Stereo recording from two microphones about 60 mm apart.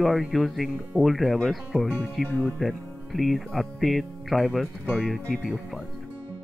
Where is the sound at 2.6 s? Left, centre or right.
Centre.